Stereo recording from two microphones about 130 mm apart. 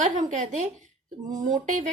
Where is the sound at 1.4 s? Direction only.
75° right (ahead or behind).